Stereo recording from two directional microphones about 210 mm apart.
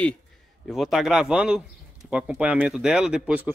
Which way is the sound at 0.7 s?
Centre (ahead or behind).